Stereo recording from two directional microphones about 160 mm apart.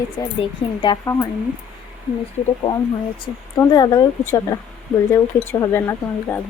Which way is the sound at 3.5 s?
25° left (ahead or behind).